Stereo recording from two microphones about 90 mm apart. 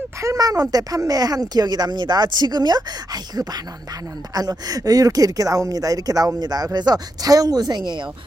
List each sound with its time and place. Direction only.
0.2 s speech: 40° right (ahead or behind); by 8.0 s 55° right (ahead or behind)